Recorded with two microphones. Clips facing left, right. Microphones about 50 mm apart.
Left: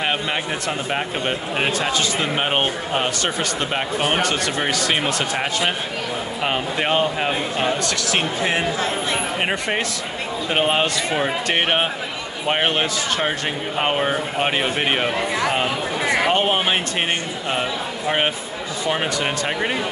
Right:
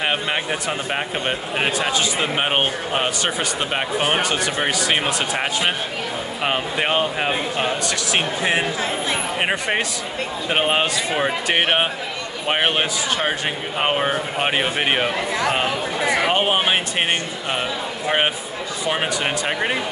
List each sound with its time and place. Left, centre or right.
0.0 s speech: centre
16.3 s speech: centre
18.0 s speech: centre